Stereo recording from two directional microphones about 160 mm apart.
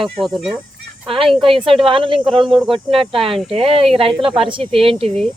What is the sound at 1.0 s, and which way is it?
Speech, 35° right (ahead or behind).